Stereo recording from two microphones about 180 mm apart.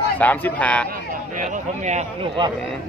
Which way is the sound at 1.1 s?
45° right (ahead or behind).